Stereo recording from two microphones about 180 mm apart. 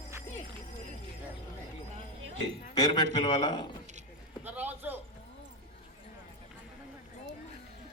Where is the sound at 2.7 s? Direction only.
20° left (ahead or behind).